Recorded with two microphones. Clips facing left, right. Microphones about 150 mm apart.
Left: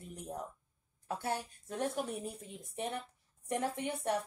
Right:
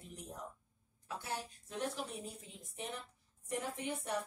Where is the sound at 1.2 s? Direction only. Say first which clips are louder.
Left 5 dB; 50° left (ahead or behind).